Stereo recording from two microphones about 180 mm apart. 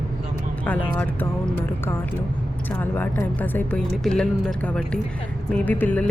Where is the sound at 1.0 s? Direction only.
10° left (ahead or behind).